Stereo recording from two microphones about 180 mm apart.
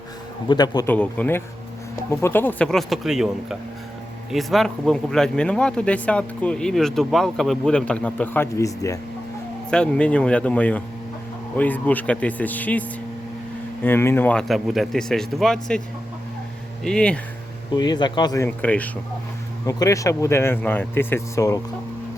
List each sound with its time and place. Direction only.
0.4 s speech: 25° left (ahead or behind)
0.9 s speech: 10° left (ahead or behind)
9.6 s speech: 5° left (ahead or behind)
13.8 s speech: 10° left (ahead or behind)
16.8 s speech: 5° left (ahead or behind)
17.7 s speech: 25° left (ahead or behind)
18.4 s speech: 10° left (ahead or behind)